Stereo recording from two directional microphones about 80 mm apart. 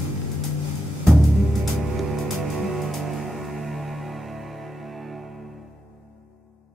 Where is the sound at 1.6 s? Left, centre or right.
Centre.